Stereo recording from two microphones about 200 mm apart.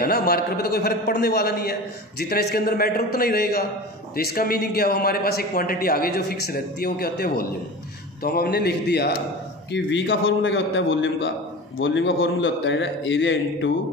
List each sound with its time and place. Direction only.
0.0 s a man's voice: 50° left (ahead or behind)
9.7 s a man's voice: 65° left (ahead or behind)